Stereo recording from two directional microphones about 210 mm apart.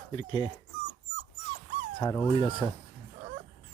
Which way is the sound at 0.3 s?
20° left (ahead or behind).